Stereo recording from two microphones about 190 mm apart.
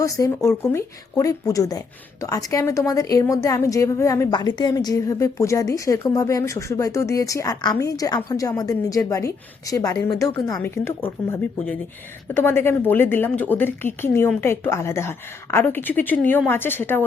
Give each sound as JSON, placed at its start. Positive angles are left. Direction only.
{"t": 0.0, "sound": "a woman's voice", "side_deg": 15}